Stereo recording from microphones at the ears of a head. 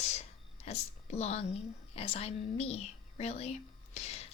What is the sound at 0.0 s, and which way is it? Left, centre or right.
Speech, left.